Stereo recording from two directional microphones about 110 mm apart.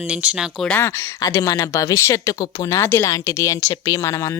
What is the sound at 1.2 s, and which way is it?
Speech, 30° left (ahead or behind).